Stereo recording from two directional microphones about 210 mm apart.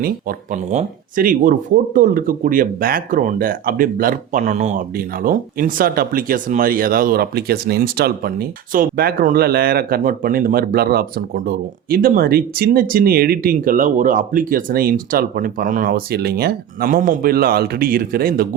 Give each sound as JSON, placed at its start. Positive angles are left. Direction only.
{"t": 0.0, "sound": "speech", "side_deg": -40}